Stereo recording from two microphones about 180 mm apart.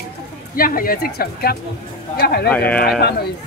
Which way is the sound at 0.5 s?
55° left (ahead or behind).